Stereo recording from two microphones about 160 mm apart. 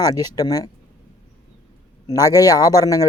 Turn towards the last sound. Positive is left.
turn(degrees=20)  # may be behind; listen again after turning